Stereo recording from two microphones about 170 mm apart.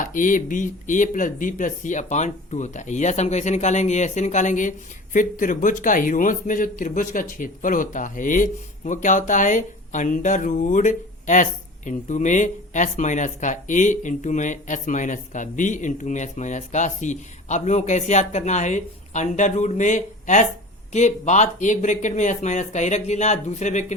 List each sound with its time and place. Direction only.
0.0 s speech: 50° left (ahead or behind)